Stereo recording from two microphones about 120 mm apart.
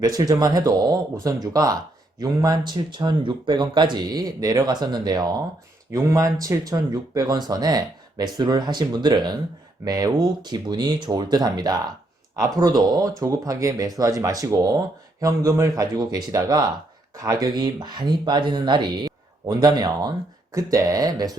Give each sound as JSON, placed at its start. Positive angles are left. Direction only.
{"t": 0.0, "sound": "speech", "side_deg": -35}